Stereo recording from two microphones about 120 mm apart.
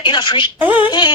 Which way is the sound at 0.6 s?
15° right (ahead or behind).